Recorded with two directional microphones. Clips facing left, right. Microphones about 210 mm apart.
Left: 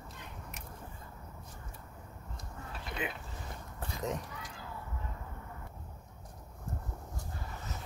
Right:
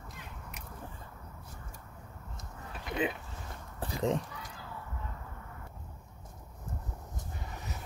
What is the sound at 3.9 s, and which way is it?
Honk, 30° right (ahead or behind).